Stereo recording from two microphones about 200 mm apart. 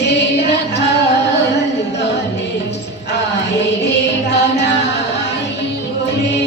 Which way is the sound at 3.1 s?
60° left (ahead or behind).